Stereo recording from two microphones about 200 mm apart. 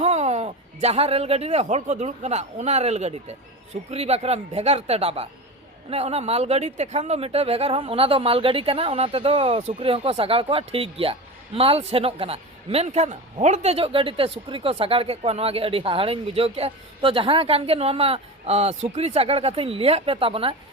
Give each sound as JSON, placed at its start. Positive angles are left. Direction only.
{"t": 0.0, "sound": "a man's voice", "side_deg": -35}